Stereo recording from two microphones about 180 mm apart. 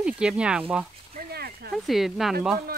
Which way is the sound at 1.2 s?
60° right (ahead or behind).